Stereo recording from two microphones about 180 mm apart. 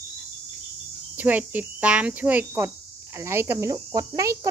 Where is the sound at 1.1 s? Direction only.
10° right (ahead or behind).